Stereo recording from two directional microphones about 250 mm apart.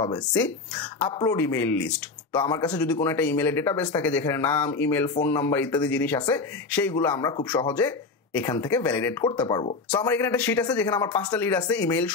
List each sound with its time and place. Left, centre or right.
1.0 s speech: centre
2.3 s speech: centre
2.6 s speech: centre
9.2 s speech: centre
10.0 s speech: centre